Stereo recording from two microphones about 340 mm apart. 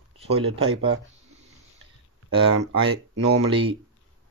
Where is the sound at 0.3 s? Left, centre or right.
Centre.